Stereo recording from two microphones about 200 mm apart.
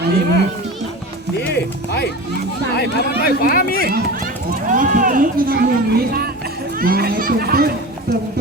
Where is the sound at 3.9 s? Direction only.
45° right (ahead or behind).